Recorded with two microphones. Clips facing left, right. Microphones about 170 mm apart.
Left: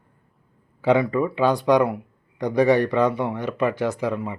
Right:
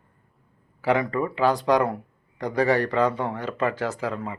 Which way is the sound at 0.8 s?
15° left (ahead or behind).